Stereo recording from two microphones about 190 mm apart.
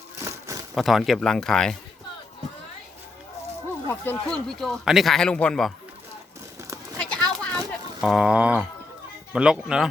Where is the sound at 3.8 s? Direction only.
10° left (ahead or behind).